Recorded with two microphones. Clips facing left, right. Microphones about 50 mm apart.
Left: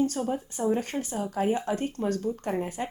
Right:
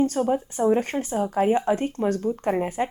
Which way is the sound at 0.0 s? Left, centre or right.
Right.